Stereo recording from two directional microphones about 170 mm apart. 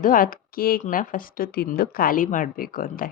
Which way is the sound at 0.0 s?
55° left (ahead or behind).